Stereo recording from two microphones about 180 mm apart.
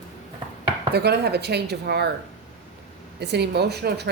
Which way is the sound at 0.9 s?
65° right (ahead or behind).